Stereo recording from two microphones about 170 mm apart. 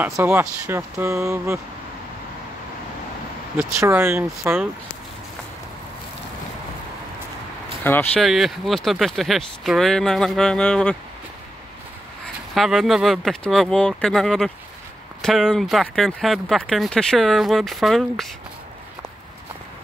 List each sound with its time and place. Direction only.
0.0 s speech: 15° right (ahead or behind)
3.5 s speech: 15° right (ahead or behind)
7.8 s speech: 10° left (ahead or behind)
8.2 s speech: centre (ahead or behind)
12.5 s speech: centre (ahead or behind)